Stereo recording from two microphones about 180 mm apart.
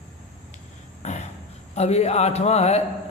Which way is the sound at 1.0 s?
40° left (ahead or behind).